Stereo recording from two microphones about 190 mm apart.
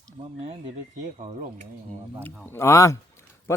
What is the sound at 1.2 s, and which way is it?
Speech, 35° right (ahead or behind).